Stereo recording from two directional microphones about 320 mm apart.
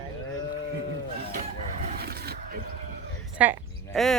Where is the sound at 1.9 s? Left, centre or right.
Right.